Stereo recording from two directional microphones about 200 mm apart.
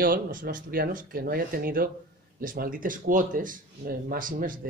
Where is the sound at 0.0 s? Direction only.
45° right (ahead or behind).